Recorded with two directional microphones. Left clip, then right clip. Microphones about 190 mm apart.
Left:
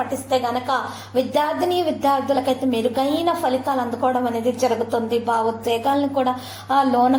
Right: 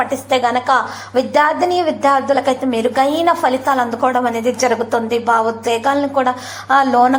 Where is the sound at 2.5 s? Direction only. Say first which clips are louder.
Right 4 dB; 45° right (ahead or behind).